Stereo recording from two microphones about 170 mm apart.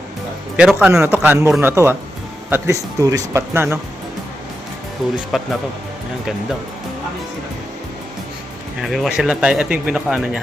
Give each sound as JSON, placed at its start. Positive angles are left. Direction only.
{"t": 0.5, "sound": "speech", "side_deg": -5}
{"t": 5.3, "sound": "speech", "side_deg": 0}
{"t": 8.8, "sound": "speech", "side_deg": 0}